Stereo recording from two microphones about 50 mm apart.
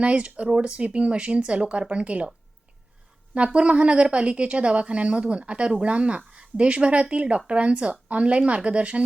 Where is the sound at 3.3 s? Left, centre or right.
Right.